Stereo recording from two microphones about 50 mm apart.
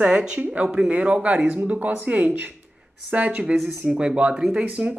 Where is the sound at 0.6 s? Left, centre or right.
Centre.